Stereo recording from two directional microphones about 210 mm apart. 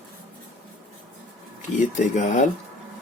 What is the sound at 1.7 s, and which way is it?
Speech, 35° left (ahead or behind).